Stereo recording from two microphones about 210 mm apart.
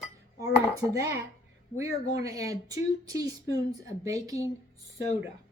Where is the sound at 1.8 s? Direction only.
15° right (ahead or behind).